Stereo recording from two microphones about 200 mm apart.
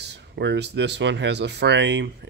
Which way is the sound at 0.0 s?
60° right (ahead or behind).